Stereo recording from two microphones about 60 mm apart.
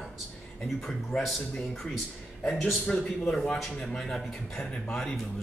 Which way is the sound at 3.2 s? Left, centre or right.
Centre.